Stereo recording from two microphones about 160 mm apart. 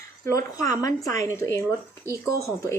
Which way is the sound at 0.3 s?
20° left (ahead or behind).